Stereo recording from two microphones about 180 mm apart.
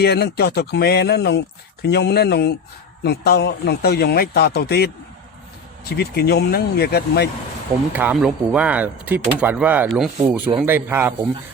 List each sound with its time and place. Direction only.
0.0 s speech: 65° left (ahead or behind)
6.0 s speech: 65° left (ahead or behind)
7.9 s speech: 5° right (ahead or behind)